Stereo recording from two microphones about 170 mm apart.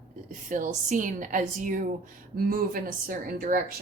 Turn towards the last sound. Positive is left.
turn(degrees=-55)  # may be behind; listen again after turning